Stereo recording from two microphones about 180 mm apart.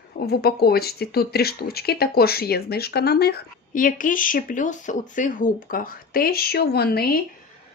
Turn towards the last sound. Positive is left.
turn(degrees=60)  # may be behind; listen again after turning